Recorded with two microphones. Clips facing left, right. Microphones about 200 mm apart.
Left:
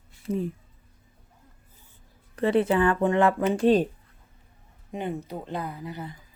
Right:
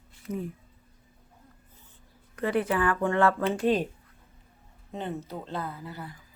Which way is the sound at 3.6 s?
30° left (ahead or behind).